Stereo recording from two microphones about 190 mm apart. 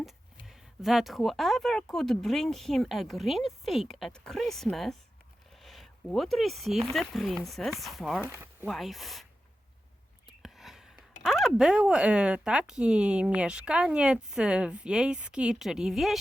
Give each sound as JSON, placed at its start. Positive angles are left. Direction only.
{"t": 0.0, "sound": "speech", "side_deg": 0}
{"t": 10.4, "sound": "a sound", "side_deg": 0}
{"t": 11.2, "sound": "speech", "side_deg": 0}